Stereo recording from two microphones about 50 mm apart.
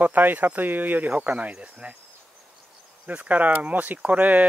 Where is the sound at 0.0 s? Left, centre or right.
Right.